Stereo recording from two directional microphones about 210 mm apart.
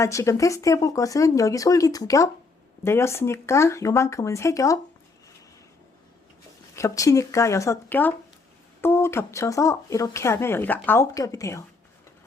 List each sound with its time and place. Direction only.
0.0 s speech: 15° left (ahead or behind)
6.7 s speech: 15° left (ahead or behind)